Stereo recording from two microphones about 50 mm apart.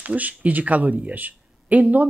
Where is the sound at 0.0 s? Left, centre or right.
Right.